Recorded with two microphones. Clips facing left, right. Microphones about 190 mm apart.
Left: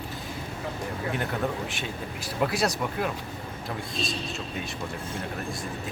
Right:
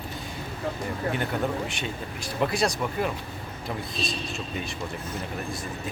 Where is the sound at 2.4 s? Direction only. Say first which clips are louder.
Right 1 dB; 5° left (ahead or behind).